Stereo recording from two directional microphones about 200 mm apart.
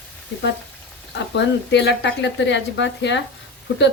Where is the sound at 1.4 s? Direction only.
60° left (ahead or behind).